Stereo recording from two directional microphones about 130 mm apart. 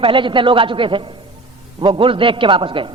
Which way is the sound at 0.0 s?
40° right (ahead or behind).